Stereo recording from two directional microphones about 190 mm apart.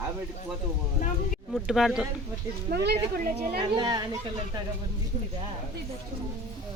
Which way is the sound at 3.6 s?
25° right (ahead or behind).